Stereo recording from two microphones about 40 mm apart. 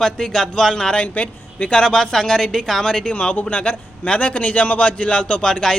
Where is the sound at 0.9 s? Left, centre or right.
Left.